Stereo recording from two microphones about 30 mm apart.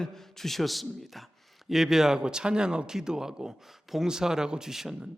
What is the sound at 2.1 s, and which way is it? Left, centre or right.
A man's voice, right.